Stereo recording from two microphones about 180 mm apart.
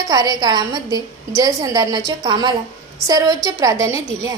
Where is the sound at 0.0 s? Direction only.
20° right (ahead or behind).